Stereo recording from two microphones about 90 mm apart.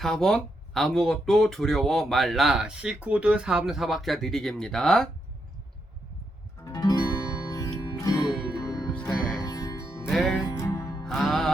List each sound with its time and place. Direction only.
0.0 s speech: 5° left (ahead or behind)
6.7 s music: 45° left (ahead or behind)
10.1 s music: centre (ahead or behind)
10.6 s music: 40° left (ahead or behind)
11.1 s music: 5° left (ahead or behind)